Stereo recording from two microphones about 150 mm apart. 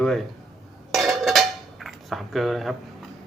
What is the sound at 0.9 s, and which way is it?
Dishes, centre (ahead or behind).